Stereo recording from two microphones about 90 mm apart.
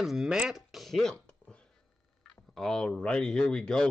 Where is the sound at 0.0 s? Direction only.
5° right (ahead or behind).